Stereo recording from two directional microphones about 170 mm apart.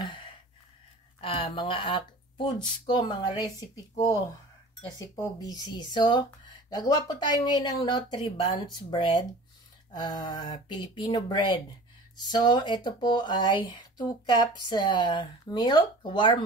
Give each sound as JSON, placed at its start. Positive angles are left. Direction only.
{"t": 0.0, "sound": "gasp", "side_deg": 30}
{"t": 1.2, "sound": "speech", "side_deg": 30}
{"t": 4.9, "sound": "speech", "side_deg": 20}